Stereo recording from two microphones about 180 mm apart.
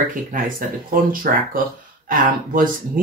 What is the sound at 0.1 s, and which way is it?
Speech, 50° right (ahead or behind).